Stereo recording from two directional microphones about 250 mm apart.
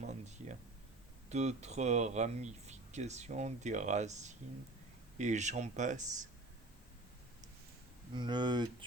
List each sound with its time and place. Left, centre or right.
0.0 s a sound: right
1.3 s speech: right
8.1 s speech: centre